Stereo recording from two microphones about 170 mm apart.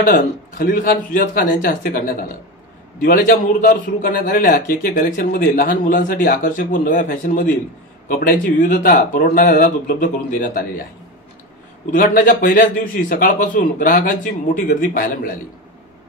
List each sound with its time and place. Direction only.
0.0 s a man's voice: 55° left (ahead or behind)
11.9 s a man's voice: 55° left (ahead or behind)